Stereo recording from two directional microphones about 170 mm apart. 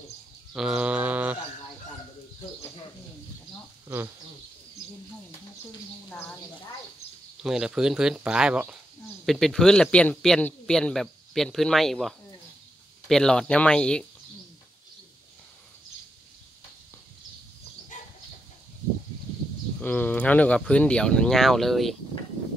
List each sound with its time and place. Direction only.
0.5 s bird: 5° right (ahead or behind)
6.0 s speech: 10° left (ahead or behind)
7.4 s speech: 5° right (ahead or behind)
17.9 s chicken: 45° left (ahead or behind)
19.8 s speech: 10° left (ahead or behind)